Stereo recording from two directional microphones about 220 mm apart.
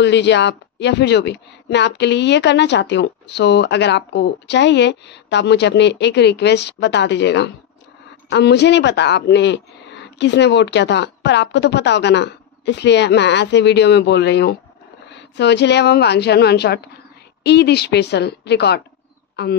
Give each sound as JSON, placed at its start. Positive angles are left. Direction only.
{"t": 0.0, "sound": "a woman's voice", "side_deg": 50}